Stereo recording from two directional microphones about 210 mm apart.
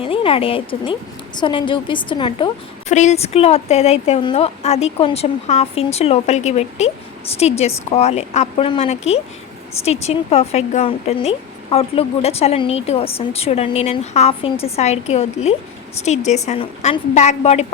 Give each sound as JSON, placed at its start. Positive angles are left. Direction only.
{"t": 0.0, "sound": "speech", "side_deg": 25}
{"t": 2.9, "sound": "a woman's voice", "side_deg": 35}